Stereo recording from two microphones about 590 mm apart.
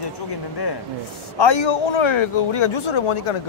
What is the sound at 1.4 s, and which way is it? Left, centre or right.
Speech, left.